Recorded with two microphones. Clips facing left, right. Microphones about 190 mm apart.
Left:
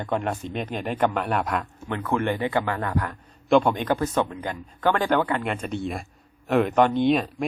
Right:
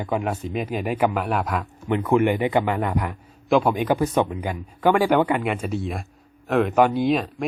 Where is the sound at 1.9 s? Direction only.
15° right (ahead or behind).